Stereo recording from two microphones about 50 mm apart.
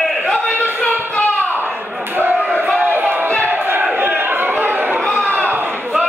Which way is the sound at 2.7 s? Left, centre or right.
Right.